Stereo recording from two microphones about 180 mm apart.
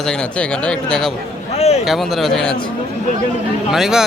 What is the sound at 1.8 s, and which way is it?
Speech, centre (ahead or behind).